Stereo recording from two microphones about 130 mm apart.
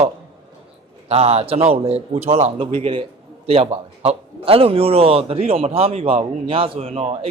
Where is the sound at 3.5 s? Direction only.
50° right (ahead or behind).